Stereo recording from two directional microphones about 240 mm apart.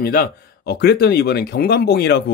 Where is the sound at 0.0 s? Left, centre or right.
Left.